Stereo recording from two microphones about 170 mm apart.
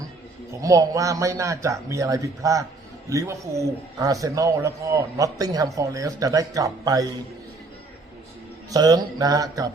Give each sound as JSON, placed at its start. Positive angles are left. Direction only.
{"t": 0.6, "sound": "a man's voice", "side_deg": -20}
{"t": 8.7, "sound": "a man's voice", "side_deg": -20}